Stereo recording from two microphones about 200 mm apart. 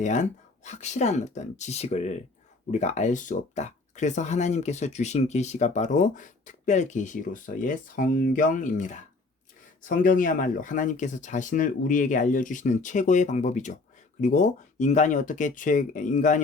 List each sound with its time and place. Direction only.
0.0 s speech: 35° left (ahead or behind)